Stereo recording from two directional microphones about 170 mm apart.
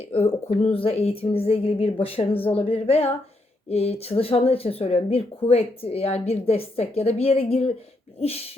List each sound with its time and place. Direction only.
0.1 s speech: 35° left (ahead or behind)